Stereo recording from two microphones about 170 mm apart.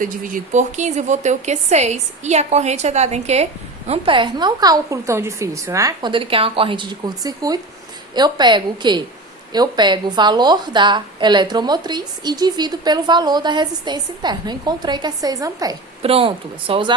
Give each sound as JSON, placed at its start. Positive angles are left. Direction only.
{"t": 0.0, "sound": "a woman's voice", "side_deg": -50}
{"t": 16.0, "sound": "speech", "side_deg": -35}